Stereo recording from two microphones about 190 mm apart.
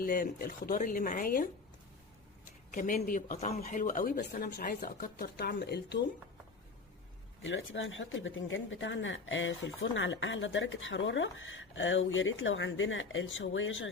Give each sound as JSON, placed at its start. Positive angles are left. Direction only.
{"t": 0.0, "sound": "speech", "side_deg": 50}
{"t": 2.7, "sound": "speech", "side_deg": 45}
{"t": 7.4, "sound": "speech", "side_deg": 85}